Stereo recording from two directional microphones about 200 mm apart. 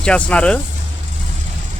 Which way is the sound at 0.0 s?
5° left (ahead or behind).